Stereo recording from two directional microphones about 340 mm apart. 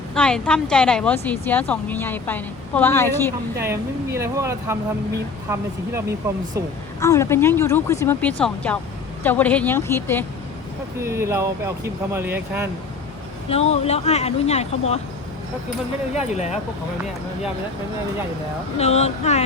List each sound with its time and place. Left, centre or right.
0.1 s speech: centre
3.6 s speech: centre
7.0 s speech: centre
11.0 s speech: centre
13.5 s speech: centre
18.8 s speech: centre